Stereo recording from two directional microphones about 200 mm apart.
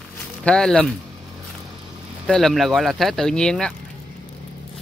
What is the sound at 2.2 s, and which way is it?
Speech, centre (ahead or behind).